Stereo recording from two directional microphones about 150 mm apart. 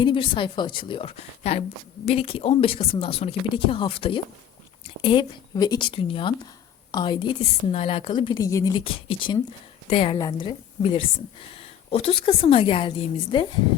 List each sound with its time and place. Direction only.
0.0 s speech: 35° left (ahead or behind)
8.8 s speech: 40° left (ahead or behind)
10.2 s speech: 30° left (ahead or behind)